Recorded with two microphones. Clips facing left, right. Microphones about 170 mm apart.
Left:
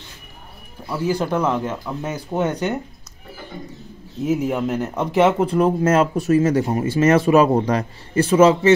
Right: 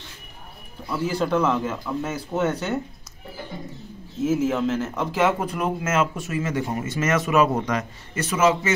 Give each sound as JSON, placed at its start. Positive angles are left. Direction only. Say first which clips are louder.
{"t": 0.8, "sound": "speech", "louder": "left 3 dB", "side_deg": 10}
{"t": 4.3, "sound": "speech", "louder": "left 2 dB", "side_deg": 15}